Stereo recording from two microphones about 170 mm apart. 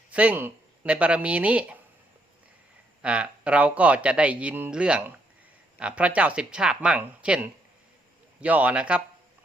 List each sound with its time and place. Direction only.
0.1 s speech: 10° right (ahead or behind)
3.0 s speech: 5° right (ahead or behind)